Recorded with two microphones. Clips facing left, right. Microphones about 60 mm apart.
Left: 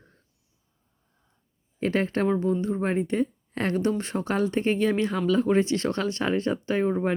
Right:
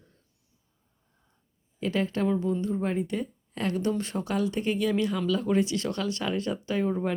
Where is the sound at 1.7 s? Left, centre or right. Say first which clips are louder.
Left 3 dB; left.